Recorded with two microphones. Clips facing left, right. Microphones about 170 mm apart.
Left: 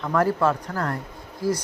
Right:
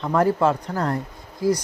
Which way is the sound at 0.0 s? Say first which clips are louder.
Right 2 dB; 20° right (ahead or behind).